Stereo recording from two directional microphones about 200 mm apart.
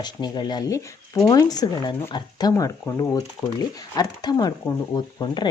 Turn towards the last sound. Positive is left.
turn(degrees=20)  # may be behind; listen again after turning